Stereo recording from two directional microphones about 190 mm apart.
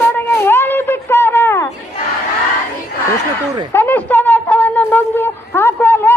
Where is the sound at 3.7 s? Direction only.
10° left (ahead or behind).